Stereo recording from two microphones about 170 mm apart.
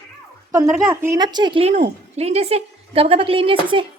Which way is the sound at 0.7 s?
10° right (ahead or behind).